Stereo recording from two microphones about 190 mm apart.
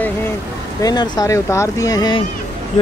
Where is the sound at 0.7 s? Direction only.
20° left (ahead or behind).